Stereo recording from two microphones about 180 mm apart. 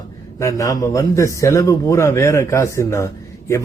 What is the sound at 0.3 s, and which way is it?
Speech, 15° left (ahead or behind).